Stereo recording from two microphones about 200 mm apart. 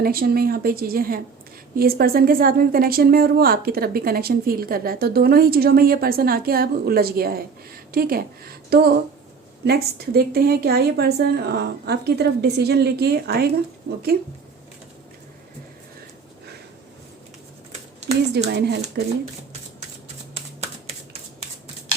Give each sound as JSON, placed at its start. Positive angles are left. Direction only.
{"t": 0.0, "sound": "a woman's voice", "side_deg": -50}
{"t": 18.4, "sound": "speech", "side_deg": -55}
{"t": 20.3, "sound": "shuffling cards", "side_deg": -30}